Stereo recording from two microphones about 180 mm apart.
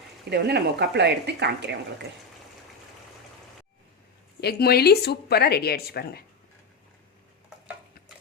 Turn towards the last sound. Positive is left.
turn(degrees=60)  # may be behind; listen again after turning